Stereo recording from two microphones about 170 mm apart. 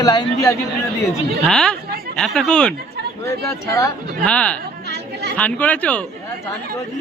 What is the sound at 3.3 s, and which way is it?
Speech, 20° left (ahead or behind).